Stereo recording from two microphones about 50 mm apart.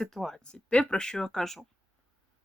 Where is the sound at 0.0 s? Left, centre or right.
Centre.